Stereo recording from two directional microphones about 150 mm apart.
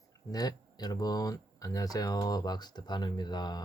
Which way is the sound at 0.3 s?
25° left (ahead or behind).